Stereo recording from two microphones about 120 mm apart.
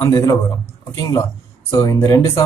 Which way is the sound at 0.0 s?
30° left (ahead or behind).